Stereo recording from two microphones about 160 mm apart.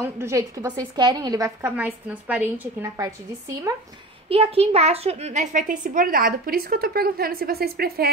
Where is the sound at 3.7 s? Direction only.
20° right (ahead or behind).